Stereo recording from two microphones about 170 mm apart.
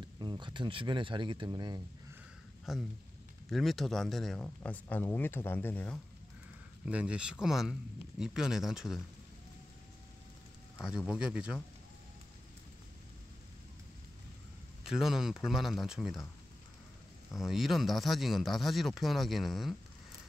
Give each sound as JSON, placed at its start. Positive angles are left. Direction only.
{"t": 0.2, "sound": "speech", "side_deg": -25}
{"t": 2.7, "sound": "speech", "side_deg": 0}
{"t": 6.9, "sound": "speech", "side_deg": -5}
{"t": 10.8, "sound": "speech", "side_deg": -5}
{"t": 14.8, "sound": "speech", "side_deg": -5}
{"t": 17.4, "sound": "speech", "side_deg": 0}